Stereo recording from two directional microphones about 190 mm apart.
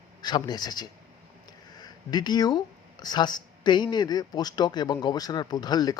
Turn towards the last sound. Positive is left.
turn(degrees=20)  # may be behind; listen again after turning